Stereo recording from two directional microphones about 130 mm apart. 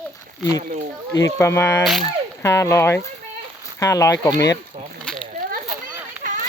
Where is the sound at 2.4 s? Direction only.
25° left (ahead or behind).